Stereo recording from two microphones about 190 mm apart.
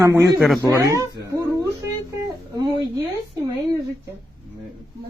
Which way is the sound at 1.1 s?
20° right (ahead or behind).